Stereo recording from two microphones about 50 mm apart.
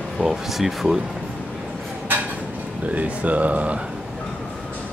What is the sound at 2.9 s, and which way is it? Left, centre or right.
Speech, right.